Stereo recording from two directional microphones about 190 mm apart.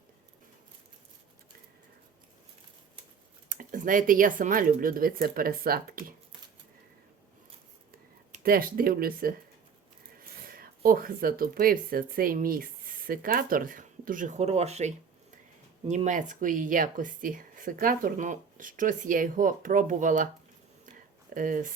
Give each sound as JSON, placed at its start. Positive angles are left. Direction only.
{"t": 3.5, "sound": "speech", "side_deg": -45}
{"t": 8.3, "sound": "speech", "side_deg": -50}
{"t": 10.4, "sound": "speech", "side_deg": -50}
{"t": 21.3, "sound": "speech", "side_deg": -45}